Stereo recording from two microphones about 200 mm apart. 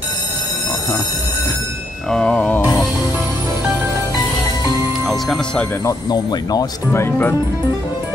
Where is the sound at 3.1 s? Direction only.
10° right (ahead or behind).